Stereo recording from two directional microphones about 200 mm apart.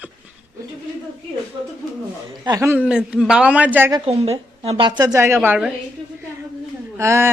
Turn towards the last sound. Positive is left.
turn(degrees=-15)  # may be behind; listen again after turning